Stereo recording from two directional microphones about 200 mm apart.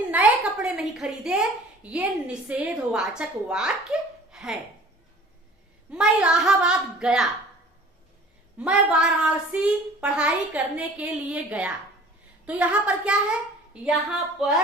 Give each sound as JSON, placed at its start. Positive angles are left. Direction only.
{"t": 0.1, "sound": "a woman's voice", "side_deg": -5}
{"t": 4.3, "sound": "laughter", "side_deg": 0}
{"t": 5.9, "sound": "a woman's voice", "side_deg": -5}
{"t": 8.5, "sound": "a woman's voice", "side_deg": -5}
{"t": 14.4, "sound": "a woman's voice", "side_deg": 0}